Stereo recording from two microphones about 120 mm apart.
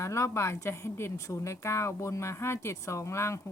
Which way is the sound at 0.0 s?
25° left (ahead or behind).